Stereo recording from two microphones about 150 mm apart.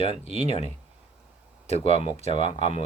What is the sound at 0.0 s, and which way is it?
Speech, 40° left (ahead or behind).